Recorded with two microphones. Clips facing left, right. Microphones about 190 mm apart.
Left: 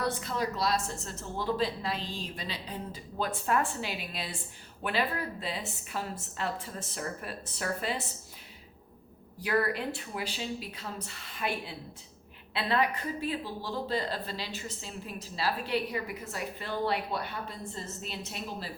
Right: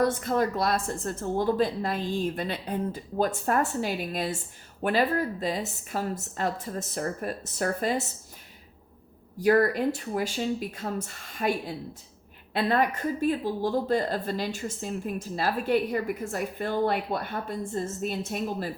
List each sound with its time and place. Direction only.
0.0 s speech: 50° right (ahead or behind)
9.4 s speech: 45° right (ahead or behind)